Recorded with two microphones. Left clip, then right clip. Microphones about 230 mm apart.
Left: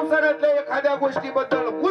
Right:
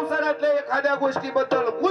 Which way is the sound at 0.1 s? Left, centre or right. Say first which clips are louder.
Left 3 dB; right.